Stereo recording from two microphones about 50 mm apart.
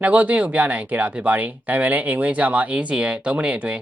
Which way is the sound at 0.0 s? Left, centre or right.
Right.